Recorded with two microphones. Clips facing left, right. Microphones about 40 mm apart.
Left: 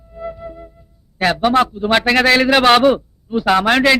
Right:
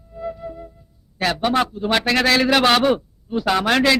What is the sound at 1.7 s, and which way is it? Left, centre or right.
A man's voice, centre.